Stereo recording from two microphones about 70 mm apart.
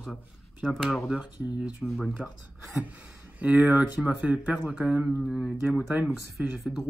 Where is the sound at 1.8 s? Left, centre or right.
Centre.